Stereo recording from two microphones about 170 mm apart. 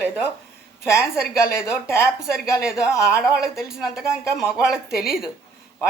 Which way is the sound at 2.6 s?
5° right (ahead or behind).